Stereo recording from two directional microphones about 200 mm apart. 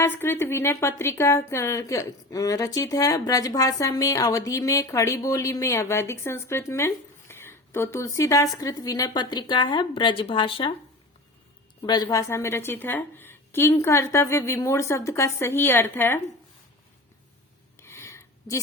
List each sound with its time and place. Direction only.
0.0 s a woman's voice: 10° left (ahead or behind)
11.8 s a woman's voice: 20° left (ahead or behind)
17.7 s a sound: 10° left (ahead or behind)